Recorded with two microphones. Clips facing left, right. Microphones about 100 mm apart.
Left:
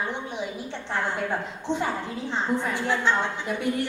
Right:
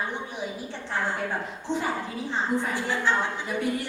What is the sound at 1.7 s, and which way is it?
Speech, 15° right (ahead or behind).